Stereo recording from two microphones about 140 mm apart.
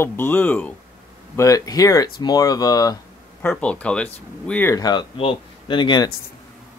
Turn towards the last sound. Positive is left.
turn(degrees=35)  # may be behind; listen again after turning